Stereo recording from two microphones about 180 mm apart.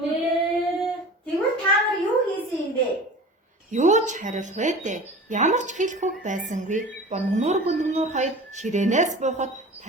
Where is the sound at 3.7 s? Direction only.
40° right (ahead or behind).